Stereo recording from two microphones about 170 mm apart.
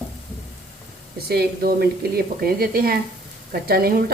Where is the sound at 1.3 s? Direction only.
70° right (ahead or behind).